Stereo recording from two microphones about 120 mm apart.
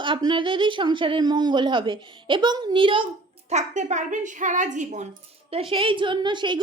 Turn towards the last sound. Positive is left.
turn(degrees=-40)  # may be behind; listen again after turning